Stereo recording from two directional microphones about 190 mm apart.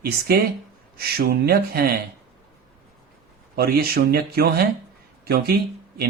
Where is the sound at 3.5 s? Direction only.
55° right (ahead or behind).